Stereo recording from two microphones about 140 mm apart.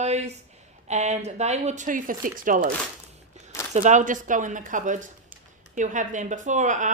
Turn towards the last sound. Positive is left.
turn(degrees=-60)  # may be behind; listen again after turning